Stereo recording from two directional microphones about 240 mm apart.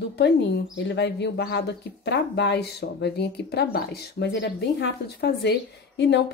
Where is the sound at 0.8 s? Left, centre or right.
Left.